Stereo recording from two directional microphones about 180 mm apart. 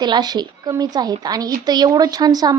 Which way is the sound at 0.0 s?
25° right (ahead or behind).